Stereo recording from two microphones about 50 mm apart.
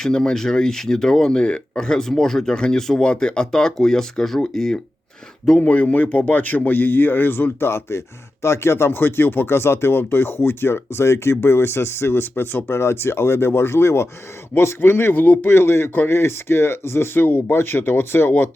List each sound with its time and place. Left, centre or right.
0.0 s speech: centre
5.5 s speech: left
7.7 s speech: left
9.0 s speech: left